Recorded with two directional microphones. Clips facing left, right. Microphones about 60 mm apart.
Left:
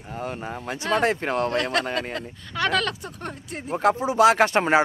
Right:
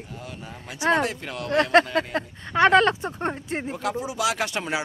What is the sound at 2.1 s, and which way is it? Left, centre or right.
Speech, right.